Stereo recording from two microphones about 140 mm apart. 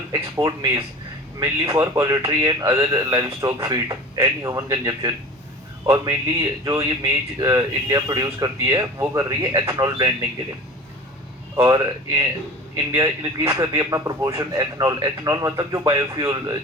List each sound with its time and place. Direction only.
0.1 s speech: 30° right (ahead or behind)
11.5 s speech: 25° right (ahead or behind)